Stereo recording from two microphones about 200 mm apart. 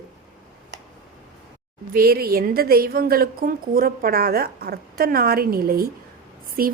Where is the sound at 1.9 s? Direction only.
50° right (ahead or behind).